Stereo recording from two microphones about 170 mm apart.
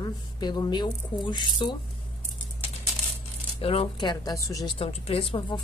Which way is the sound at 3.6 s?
35° left (ahead or behind).